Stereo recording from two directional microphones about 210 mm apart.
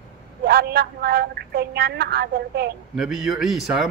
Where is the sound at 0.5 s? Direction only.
50° right (ahead or behind).